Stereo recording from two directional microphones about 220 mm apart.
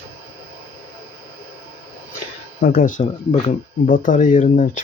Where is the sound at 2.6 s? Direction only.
40° left (ahead or behind).